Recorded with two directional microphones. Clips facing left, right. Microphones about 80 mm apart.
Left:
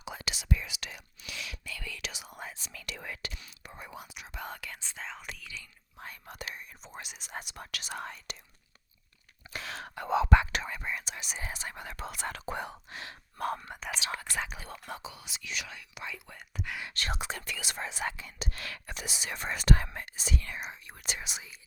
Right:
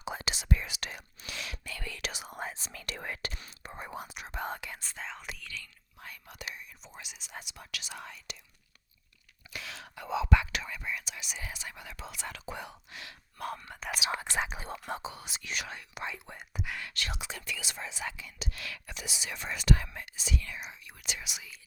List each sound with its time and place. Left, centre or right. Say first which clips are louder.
0.0 s whispering: right 3 dB; right
0.4 s whispering: left 1 dB; right
4.8 s speech: even; centre
6.0 s speech: left 3 dB; left
9.5 s speech: left 4 dB; left
13.7 s speech: right 1 dB; centre
14.2 s speech: right 3 dB; right
16.6 s speech: even; centre
16.9 s speech: left 3 dB; left